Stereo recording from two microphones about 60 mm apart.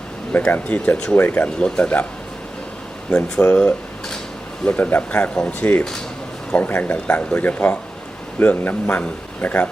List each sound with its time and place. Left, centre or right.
0.5 s speech: left
1.1 s speech: left
1.5 s speech: centre
3.1 s speech: centre
4.8 s speech: left
5.5 s speech: left